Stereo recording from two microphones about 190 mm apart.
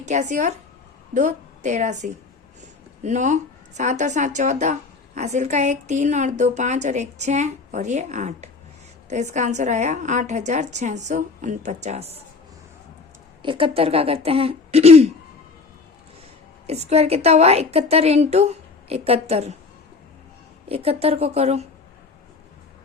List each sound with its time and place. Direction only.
0.0 s a woman's voice: 40° right (ahead or behind)
13.4 s a woman's voice: 25° right (ahead or behind)
16.6 s a woman's voice: 35° right (ahead or behind)
20.7 s a woman's voice: 30° right (ahead or behind)